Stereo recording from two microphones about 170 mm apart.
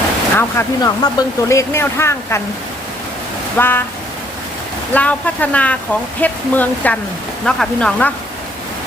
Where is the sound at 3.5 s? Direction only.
10° left (ahead or behind).